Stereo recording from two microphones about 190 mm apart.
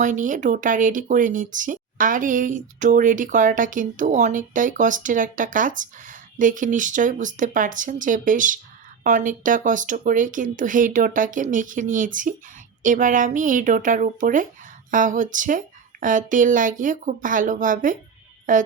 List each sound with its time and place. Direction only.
0.0 s speech: 40° right (ahead or behind)